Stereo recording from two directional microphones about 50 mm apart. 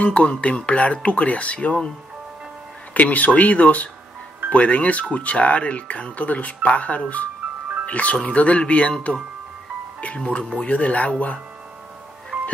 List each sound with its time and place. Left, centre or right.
0.0 s speech: left
2.9 s speech: left
9.9 s speech: left
12.3 s music: right